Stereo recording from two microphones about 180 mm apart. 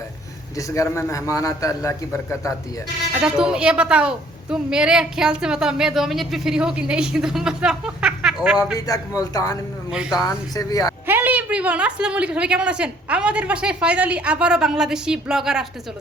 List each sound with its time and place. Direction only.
0.5 s a man's voice: 15° left (ahead or behind)
3.1 s a woman's voice: 5° right (ahead or behind)
8.5 s a man's voice: 20° left (ahead or behind)
9.9 s a woman's voice: 5° right (ahead or behind)
10.2 s a man's voice: 20° left (ahead or behind)
11.0 s a woman's voice: 10° right (ahead or behind)